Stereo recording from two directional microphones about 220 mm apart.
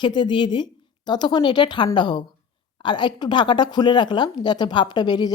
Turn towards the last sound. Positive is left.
turn(degrees=20)  # may be behind; listen again after turning